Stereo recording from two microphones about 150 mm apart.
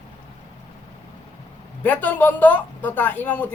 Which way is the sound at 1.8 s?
10° left (ahead or behind).